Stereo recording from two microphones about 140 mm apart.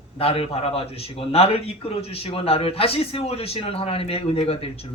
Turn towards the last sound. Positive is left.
turn(degrees=45)  # may be behind; listen again after turning